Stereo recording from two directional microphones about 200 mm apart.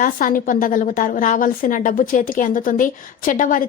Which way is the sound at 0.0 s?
40° left (ahead or behind).